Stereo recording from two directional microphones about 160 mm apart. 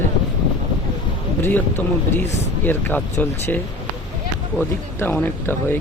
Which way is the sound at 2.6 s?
10° left (ahead or behind).